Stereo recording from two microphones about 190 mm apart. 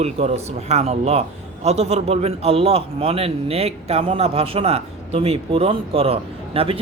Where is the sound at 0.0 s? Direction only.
35° right (ahead or behind).